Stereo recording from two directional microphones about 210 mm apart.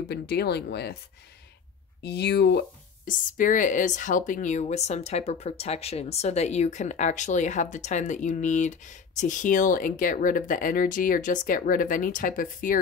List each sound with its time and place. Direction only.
0.0 s speech: 50° left (ahead or behind)
2.0 s speech: 50° left (ahead or behind)
3.1 s speech: 40° left (ahead or behind)